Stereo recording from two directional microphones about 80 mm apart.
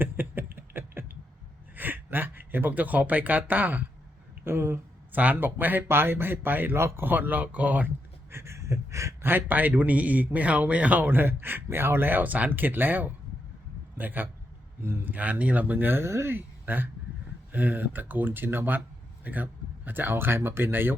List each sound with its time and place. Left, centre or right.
0.0 s a sound: right
1.7 s a man's voice: right
8.3 s a sound: right
9.3 s a man's voice: right
14.8 s speech: right
15.0 s a man's voice: centre